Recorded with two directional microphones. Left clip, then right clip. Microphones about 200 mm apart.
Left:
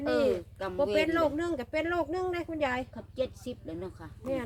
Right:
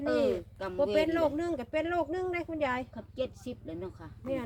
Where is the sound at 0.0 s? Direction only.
15° left (ahead or behind).